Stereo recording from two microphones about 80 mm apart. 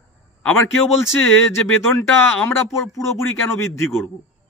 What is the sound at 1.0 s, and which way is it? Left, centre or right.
Speech, left.